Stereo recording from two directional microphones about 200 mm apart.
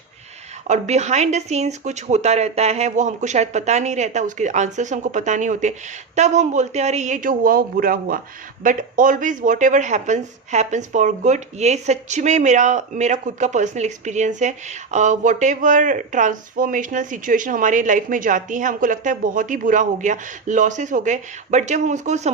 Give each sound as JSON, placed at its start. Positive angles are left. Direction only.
{"t": 0.7, "sound": "speech", "side_deg": -35}